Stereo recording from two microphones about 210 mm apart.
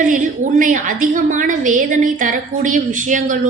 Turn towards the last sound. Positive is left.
turn(degrees=-40)  # may be behind; listen again after turning